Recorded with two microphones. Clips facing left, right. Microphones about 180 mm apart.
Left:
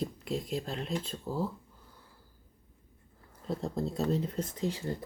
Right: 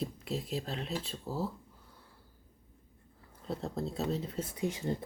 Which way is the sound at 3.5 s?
Centre (ahead or behind).